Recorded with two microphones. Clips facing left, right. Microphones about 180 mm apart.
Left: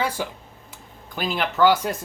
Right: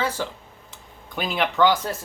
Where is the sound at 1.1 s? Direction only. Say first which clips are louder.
Right 1 dB; centre (ahead or behind).